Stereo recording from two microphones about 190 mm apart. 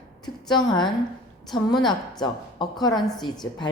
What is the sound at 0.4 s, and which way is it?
A woman's voice, 20° left (ahead or behind).